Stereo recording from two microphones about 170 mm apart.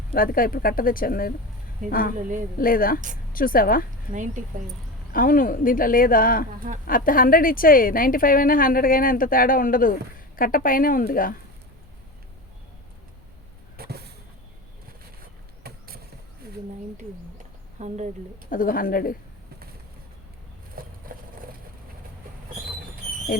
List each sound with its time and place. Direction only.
0.1 s a woman's voice: 55° left (ahead or behind)
4.1 s speech: 45° right (ahead or behind)
5.1 s a woman's voice: 55° left (ahead or behind)
13.7 s vehicle: 70° right (ahead or behind)
15.6 s vehicle: 65° right (ahead or behind)
17.7 s speech: 45° right (ahead or behind)
18.5 s a woman's voice: 55° left (ahead or behind)
20.8 s vehicle: 60° right (ahead or behind)